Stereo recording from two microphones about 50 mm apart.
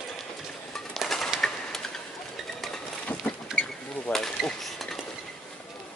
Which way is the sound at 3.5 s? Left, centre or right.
Centre.